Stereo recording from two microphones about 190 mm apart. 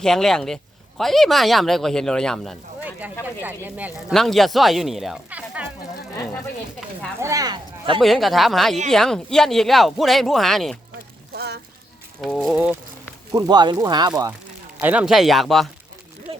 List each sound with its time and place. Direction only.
0.0 s speech: centre (ahead or behind)
3.4 s speech: 10° right (ahead or behind)
4.1 s speech: centre (ahead or behind)
7.2 s speech: 15° right (ahead or behind)
8.0 s speech: centre (ahead or behind)
11.3 s a sound: 60° right (ahead or behind)
12.2 s speech: centre (ahead or behind)
13.3 s speech: 20° right (ahead or behind)
14.8 s speech: 5° right (ahead or behind)